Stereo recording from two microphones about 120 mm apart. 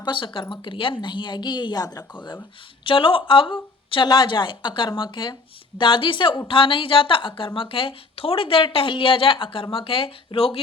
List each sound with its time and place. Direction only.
0.0 s a woman's voice: 45° left (ahead or behind)
2.8 s a woman's voice: 45° left (ahead or behind)